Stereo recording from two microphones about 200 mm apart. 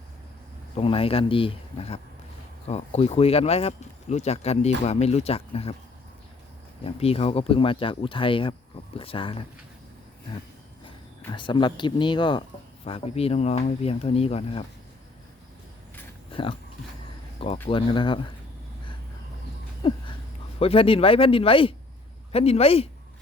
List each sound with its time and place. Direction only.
0.8 s speech: 30° left (ahead or behind)
6.8 s speech: 30° left (ahead or behind)
11.2 s speech: 20° left (ahead or behind)
16.3 s speech: 25° left (ahead or behind)
19.8 s speech: 25° left (ahead or behind)